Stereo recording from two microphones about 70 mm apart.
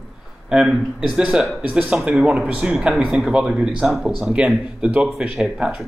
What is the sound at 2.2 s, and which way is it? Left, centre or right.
Speech, centre.